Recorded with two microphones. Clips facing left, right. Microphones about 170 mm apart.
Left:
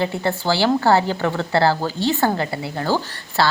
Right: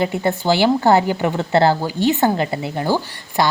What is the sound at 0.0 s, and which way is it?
A woman's voice, 15° right (ahead or behind).